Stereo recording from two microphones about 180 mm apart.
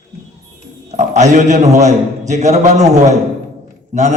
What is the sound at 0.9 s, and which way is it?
A man's voice, 40° right (ahead or behind).